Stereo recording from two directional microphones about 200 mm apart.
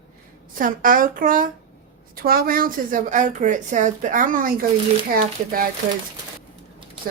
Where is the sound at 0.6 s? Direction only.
45° right (ahead or behind).